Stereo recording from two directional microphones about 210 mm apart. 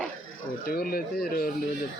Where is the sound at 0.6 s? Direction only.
45° left (ahead or behind).